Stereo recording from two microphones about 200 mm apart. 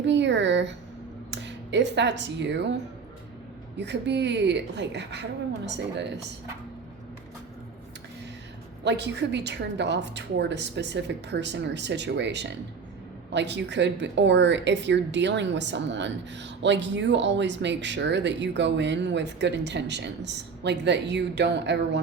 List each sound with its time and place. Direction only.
0.0 s a sound: 60° right (ahead or behind)
1.3 s speech: 60° right (ahead or behind)
8.8 s speech: 60° right (ahead or behind)